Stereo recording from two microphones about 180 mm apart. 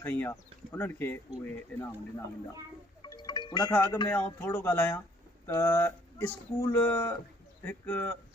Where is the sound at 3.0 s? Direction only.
25° left (ahead or behind).